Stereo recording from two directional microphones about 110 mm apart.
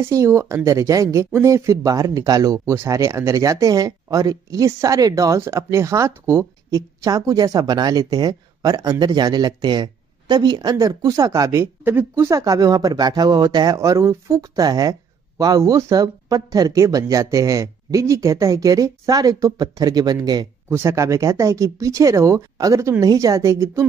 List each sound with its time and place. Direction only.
0.1 s speech: 25° right (ahead or behind)
12.3 s speech: 30° right (ahead or behind)
20.7 s speech: 25° right (ahead or behind)